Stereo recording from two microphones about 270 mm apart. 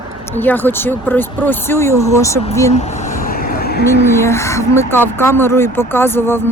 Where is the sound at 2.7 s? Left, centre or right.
Left.